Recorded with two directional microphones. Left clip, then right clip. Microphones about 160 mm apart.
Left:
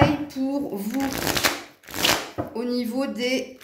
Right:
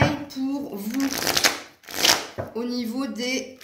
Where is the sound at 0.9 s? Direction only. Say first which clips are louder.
Right 3 dB; 30° left (ahead or behind).